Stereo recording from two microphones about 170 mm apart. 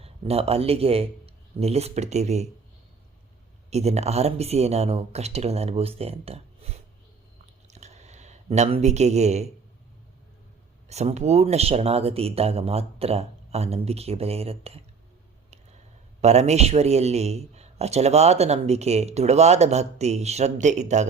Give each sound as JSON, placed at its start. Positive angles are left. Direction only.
{"t": 0.0, "sound": "a man's voice", "side_deg": -35}
{"t": 3.7, "sound": "a man's voice", "side_deg": -40}
{"t": 7.7, "sound": "a sound", "side_deg": -40}
{"t": 10.8, "sound": "a man's voice", "side_deg": -40}
{"t": 16.2, "sound": "a man's voice", "side_deg": -40}